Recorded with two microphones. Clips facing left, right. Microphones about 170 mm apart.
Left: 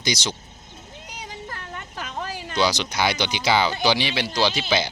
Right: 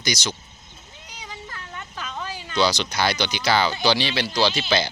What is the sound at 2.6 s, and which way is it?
Speech, 15° left (ahead or behind).